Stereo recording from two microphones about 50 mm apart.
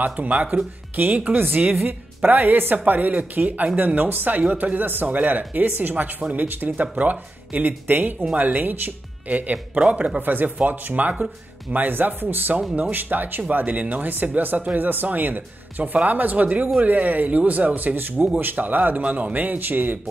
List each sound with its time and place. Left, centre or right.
0.0 s speech: right
1.8 s a woman's voice: right
10.2 s speech: right